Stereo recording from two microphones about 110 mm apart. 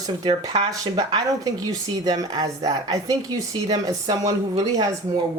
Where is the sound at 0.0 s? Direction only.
40° right (ahead or behind).